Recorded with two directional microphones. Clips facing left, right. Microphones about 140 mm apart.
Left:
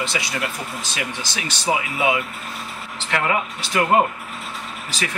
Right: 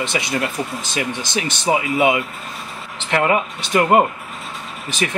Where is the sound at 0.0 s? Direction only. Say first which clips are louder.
Right 4 dB; 20° right (ahead or behind).